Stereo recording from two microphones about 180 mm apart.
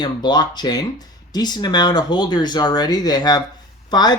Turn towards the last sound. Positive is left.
turn(degrees=20)  # may be behind; listen again after turning